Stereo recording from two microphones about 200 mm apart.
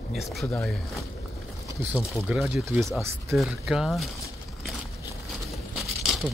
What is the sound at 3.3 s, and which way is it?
Speech, centre (ahead or behind).